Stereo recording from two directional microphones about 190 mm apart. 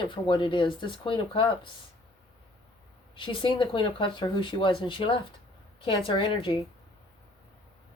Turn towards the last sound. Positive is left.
turn(degrees=25)  # may be behind; listen again after turning